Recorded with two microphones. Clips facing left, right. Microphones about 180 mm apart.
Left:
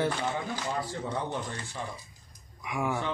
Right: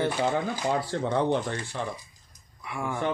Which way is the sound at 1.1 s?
70° right (ahead or behind).